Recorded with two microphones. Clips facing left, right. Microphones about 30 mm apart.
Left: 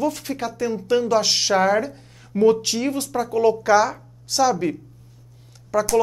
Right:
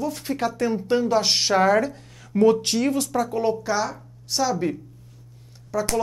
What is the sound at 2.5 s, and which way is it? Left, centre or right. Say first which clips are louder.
Speech: left 2 dB; left.